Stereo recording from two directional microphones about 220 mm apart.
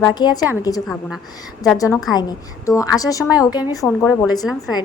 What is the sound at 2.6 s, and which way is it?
A woman's voice, 15° left (ahead or behind).